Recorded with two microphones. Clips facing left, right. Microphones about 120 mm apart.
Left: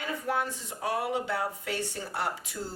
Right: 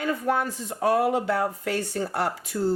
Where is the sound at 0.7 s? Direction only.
60° right (ahead or behind).